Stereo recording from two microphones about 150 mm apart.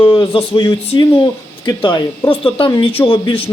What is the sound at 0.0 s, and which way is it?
A man's voice, 30° left (ahead or behind).